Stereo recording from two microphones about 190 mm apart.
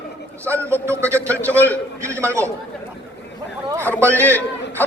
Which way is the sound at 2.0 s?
15° right (ahead or behind).